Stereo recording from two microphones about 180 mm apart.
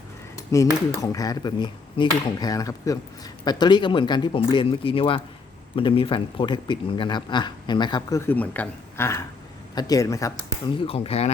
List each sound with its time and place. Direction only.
0.5 s speech: 20° left (ahead or behind)
10.8 s speech: 30° left (ahead or behind)